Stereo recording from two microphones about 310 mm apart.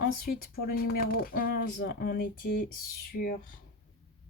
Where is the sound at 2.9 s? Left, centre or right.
Left.